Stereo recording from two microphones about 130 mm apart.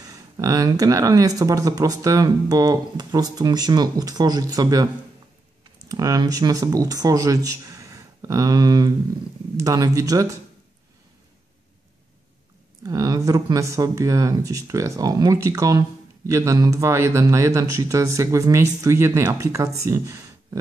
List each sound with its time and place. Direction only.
0.0 s speech: 30° right (ahead or behind)
5.9 s speech: 30° right (ahead or behind)
12.8 s speech: 30° right (ahead or behind)